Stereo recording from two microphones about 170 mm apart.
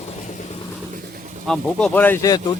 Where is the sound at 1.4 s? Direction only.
5° left (ahead or behind).